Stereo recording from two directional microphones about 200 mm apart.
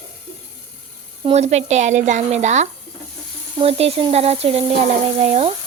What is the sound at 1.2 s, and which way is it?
Speech, 35° right (ahead or behind).